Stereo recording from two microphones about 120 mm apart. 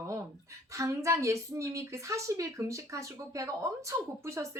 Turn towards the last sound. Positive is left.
turn(degrees=-25)  # may be behind; listen again after turning